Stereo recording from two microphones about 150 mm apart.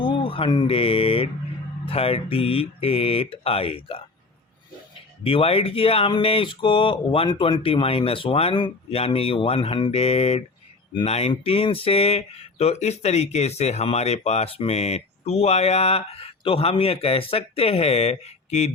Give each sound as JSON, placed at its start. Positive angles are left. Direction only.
{"t": 0.0, "sound": "speech", "side_deg": 35}
{"t": 5.2, "sound": "speech", "side_deg": 40}